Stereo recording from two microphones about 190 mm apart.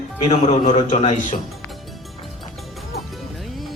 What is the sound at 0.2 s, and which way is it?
A man's voice, 35° left (ahead or behind).